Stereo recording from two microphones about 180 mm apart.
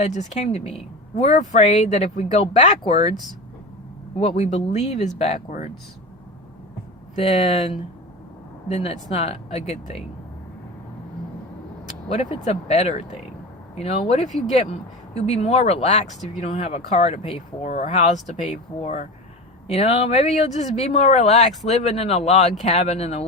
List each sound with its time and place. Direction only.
0.0 s speech: 40° left (ahead or behind)
4.2 s speech: 40° left (ahead or behind)
7.2 s speech: 35° left (ahead or behind)
12.0 s speech: 35° left (ahead or behind)
17.7 s speech: 45° left (ahead or behind)
19.6 s speech: 35° left (ahead or behind)